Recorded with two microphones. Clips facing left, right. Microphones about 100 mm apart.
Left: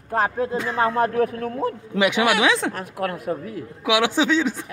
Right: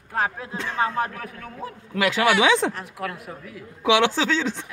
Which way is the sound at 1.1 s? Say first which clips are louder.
Left 14 dB; 45° left (ahead or behind).